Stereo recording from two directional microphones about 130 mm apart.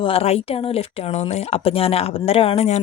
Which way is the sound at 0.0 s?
45° left (ahead or behind).